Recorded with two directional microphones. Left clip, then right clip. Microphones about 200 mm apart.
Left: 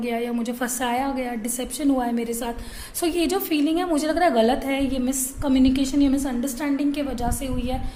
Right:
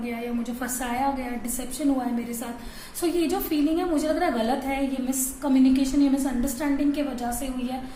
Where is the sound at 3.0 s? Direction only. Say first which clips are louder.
Left 2 dB; 50° left (ahead or behind).